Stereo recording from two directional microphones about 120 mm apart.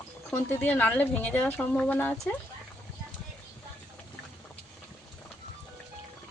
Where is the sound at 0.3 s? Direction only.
15° left (ahead or behind).